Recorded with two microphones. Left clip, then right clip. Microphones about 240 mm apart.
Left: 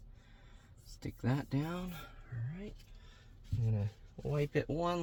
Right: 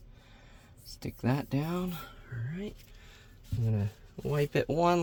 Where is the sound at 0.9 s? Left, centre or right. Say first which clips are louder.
Right 6 dB; right.